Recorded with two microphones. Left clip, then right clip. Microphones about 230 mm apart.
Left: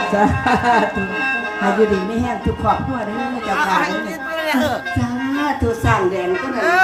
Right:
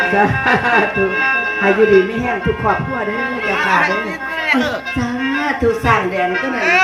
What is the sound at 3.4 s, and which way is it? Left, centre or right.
Music, left.